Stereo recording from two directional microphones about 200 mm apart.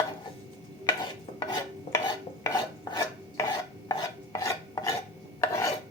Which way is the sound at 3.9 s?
15° left (ahead or behind).